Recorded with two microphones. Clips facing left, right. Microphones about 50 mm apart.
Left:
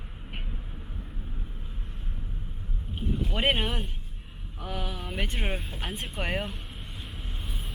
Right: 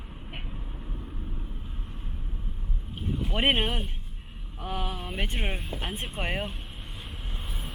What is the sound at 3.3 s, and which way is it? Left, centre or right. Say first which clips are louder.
Speech: right 2 dB; right.